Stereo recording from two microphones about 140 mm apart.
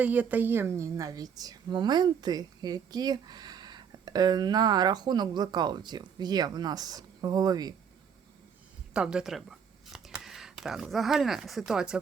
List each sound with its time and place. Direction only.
0.0 s a woman's voice: 10° right (ahead or behind); by 7.7 s 25° right (ahead or behind)
8.9 s speech: 5° right (ahead or behind)